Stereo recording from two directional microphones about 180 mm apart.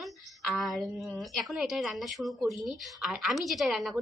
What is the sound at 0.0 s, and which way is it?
A woman's voice, centre (ahead or behind).